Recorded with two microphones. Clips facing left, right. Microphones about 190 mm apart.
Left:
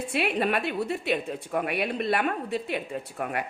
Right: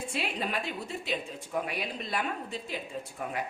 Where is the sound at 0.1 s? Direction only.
65° left (ahead or behind).